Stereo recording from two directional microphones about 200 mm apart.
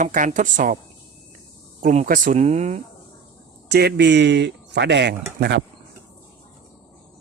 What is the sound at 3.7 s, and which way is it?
Speech, 55° right (ahead or behind).